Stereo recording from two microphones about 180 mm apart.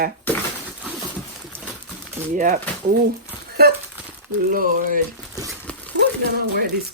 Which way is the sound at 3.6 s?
60° right (ahead or behind).